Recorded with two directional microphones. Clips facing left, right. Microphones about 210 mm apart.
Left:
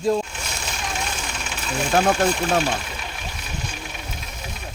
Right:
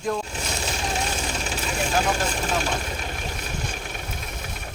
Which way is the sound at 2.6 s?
45° right (ahead or behind).